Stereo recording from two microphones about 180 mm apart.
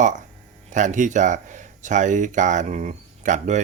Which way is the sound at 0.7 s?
45° right (ahead or behind).